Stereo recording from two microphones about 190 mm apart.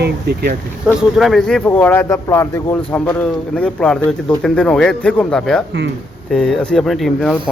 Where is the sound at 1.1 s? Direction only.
Centre (ahead or behind).